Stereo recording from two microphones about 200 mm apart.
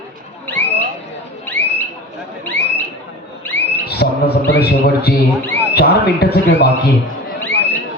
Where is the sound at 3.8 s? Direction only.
55° left (ahead or behind).